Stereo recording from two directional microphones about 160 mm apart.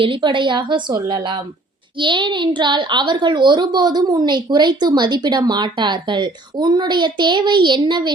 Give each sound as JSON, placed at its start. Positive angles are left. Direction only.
{"t": 0.0, "sound": "a child's voice", "side_deg": -30}